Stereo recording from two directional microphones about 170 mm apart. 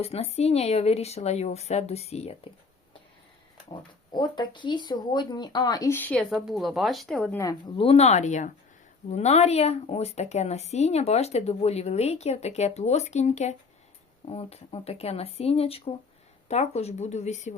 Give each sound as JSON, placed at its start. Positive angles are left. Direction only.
{"t": 0.0, "sound": "a woman's voice", "side_deg": 35}
{"t": 4.1, "sound": "speech", "side_deg": 25}
{"t": 7.3, "sound": "speech", "side_deg": 20}
{"t": 7.8, "sound": "a woman's voice", "side_deg": 35}